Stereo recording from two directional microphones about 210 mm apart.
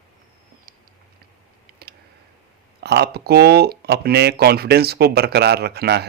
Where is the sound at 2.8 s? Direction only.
50° right (ahead or behind).